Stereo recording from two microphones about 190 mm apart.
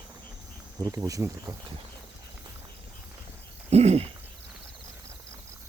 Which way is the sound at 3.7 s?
35° right (ahead or behind).